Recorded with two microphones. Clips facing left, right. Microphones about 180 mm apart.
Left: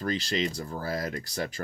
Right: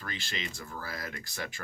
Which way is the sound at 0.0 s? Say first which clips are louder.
Left 11 dB; 40° left (ahead or behind).